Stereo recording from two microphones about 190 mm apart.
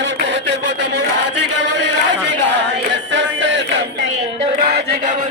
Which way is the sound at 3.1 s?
80° right.